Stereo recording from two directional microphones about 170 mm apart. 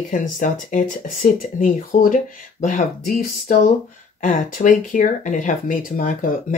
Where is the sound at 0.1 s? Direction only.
50° left (ahead or behind).